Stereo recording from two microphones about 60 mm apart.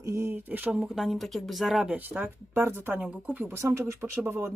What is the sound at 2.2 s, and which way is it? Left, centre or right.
Speech, right.